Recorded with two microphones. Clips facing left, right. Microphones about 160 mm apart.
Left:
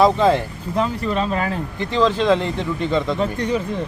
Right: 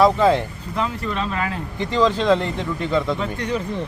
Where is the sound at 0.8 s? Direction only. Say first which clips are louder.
Left 4 dB; 35° left (ahead or behind).